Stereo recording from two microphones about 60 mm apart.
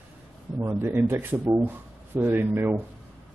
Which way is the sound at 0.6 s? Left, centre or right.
Right.